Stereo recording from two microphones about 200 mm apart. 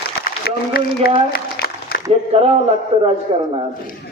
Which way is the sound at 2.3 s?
30° right (ahead or behind).